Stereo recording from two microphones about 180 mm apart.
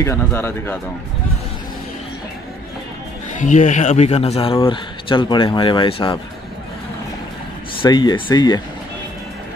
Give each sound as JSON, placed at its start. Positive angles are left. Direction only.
{"t": 0.0, "sound": "speech", "side_deg": 15}
{"t": 3.3, "sound": "speech", "side_deg": 45}
{"t": 7.8, "sound": "speech", "side_deg": 25}